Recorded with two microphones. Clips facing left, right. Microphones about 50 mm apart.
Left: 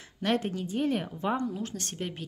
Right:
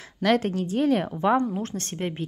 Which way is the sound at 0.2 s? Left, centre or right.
Right.